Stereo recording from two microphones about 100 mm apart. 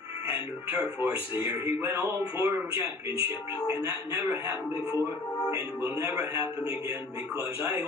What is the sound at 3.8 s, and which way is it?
Speech, 30° right (ahead or behind).